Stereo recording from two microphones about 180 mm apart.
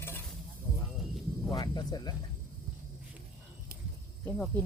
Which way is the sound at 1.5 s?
20° left (ahead or behind).